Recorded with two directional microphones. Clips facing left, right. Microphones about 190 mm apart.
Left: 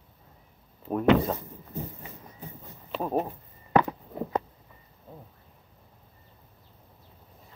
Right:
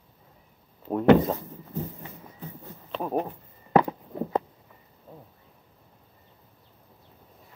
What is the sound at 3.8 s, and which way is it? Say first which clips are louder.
Walk: right 2 dB; 25° right (ahead or behind).